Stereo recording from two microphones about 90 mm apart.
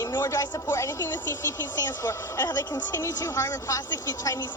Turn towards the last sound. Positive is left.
turn(degrees=35)  # may be behind; listen again after turning